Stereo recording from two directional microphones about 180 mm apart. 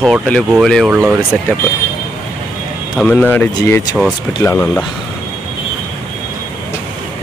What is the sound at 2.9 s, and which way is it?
Speech, 5° left (ahead or behind).